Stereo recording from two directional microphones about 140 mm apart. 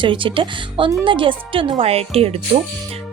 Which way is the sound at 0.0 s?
40° right (ahead or behind).